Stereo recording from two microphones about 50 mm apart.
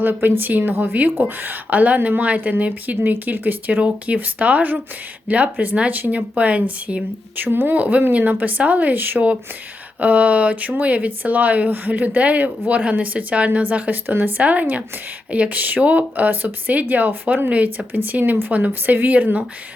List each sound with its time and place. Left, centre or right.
0.0 s speech: right
7.3 s speech: right